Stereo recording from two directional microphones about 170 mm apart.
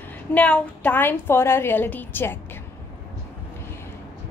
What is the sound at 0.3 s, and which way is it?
A woman's voice, 5° left (ahead or behind).